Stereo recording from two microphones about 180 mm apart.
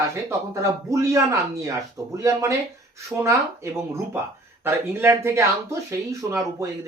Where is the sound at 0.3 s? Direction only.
15° right (ahead or behind).